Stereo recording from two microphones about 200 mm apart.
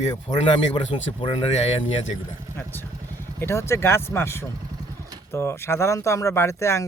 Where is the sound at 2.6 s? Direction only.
10° left (ahead or behind).